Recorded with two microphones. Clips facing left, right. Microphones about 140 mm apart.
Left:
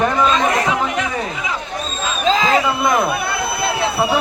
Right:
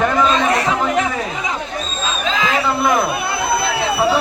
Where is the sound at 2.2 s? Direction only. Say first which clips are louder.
Left 5 dB; 35° left (ahead or behind).